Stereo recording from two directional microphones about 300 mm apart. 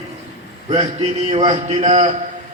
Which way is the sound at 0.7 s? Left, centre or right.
Right.